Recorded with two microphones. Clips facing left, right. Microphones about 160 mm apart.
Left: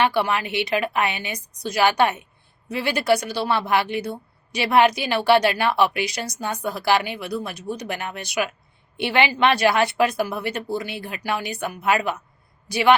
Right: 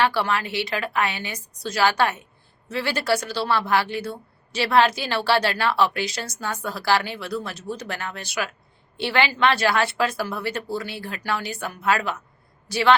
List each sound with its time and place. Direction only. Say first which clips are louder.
0.0 s a woman's voice: left 1 dB; 15° left (ahead or behind)